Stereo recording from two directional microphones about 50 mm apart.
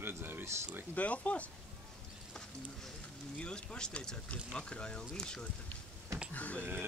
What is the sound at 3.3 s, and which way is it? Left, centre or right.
Speech, centre.